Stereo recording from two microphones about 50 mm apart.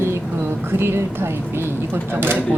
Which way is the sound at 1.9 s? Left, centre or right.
Right.